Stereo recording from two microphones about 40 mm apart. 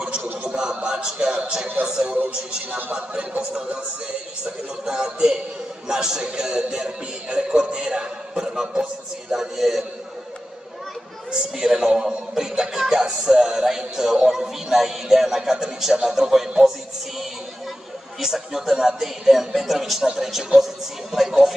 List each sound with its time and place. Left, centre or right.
0.0 s a sound: right
0.8 s a man's voice: centre
1.9 s music: centre
2.7 s a man's voice: right
4.8 s music: centre
5.9 s a man's voice: centre
9.3 s music: centre
11.5 s music: centre
18.2 s music: centre
20.5 s a woman's voice: centre